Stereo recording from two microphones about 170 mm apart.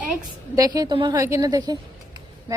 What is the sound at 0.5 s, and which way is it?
A woman's voice, 20° right (ahead or behind).